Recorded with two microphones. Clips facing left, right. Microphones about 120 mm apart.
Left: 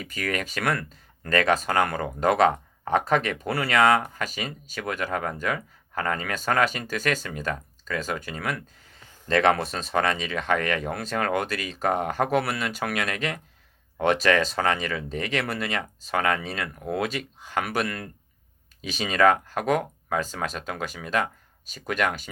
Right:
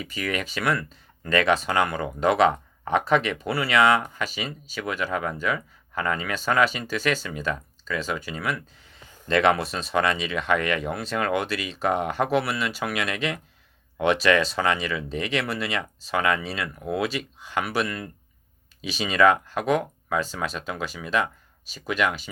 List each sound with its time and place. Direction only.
0.0 s speech: 45° left (ahead or behind)